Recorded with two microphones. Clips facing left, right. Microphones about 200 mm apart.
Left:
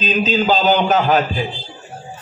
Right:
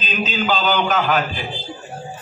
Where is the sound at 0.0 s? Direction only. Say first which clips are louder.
Left 6 dB; 40° left (ahead or behind).